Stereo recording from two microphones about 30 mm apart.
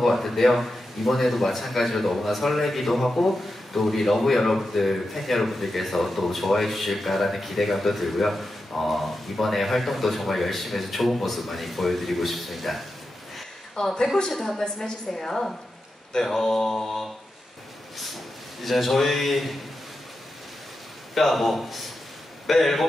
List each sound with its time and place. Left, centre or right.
0.0 s speech: centre
13.8 s a man's voice: left
14.8 s mantra: centre
17.9 s speech: centre
21.1 s speech: centre
22.5 s mantra: centre